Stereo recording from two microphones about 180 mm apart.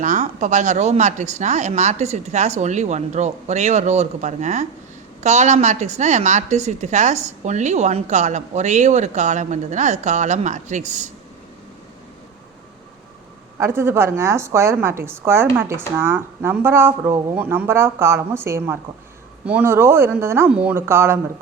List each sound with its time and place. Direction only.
0.0 s a woman's voice: 40° right (ahead or behind)
13.6 s speech: 15° right (ahead or behind)